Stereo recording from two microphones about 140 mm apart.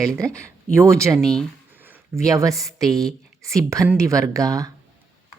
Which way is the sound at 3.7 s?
20° right (ahead or behind).